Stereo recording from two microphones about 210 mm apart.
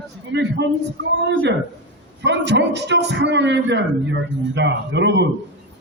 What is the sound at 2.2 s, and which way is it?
A man's voice, 55° right (ahead or behind).